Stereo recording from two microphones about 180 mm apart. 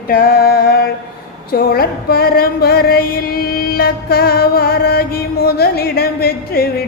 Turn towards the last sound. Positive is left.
turn(degrees=55)  # may be behind; listen again after turning